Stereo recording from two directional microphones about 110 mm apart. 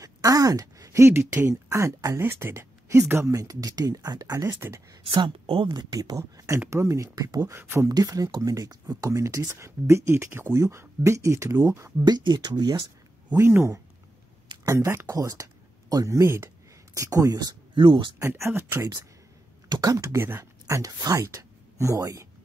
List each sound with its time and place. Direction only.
0.0 s speech: 30° right (ahead or behind)
5.0 s speech: 50° right (ahead or behind)
5.7 s speech: 40° right (ahead or behind); by 7.9 s 20° right (ahead or behind)
7.9 s speech: 35° right (ahead or behind)
12.0 s speech: 40° right (ahead or behind)
18.2 s speech: 20° right (ahead or behind)
19.7 s speech: 40° right (ahead or behind)
20.0 s speech: 25° right (ahead or behind)